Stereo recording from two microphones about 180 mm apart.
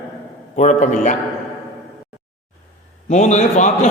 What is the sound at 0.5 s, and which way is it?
Speech, 40° left (ahead or behind).